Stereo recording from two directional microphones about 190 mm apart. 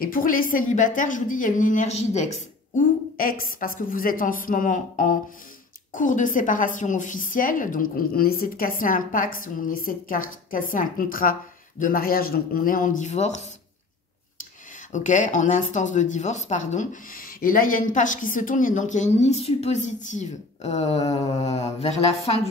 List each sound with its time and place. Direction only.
0.0 s a woman's voice: 45° left (ahead or behind)
2.7 s a woman's voice: 50° left (ahead or behind); by 22.5 s 35° left (ahead or behind)